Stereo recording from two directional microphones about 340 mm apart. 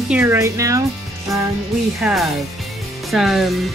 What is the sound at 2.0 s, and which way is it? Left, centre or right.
Speech, centre.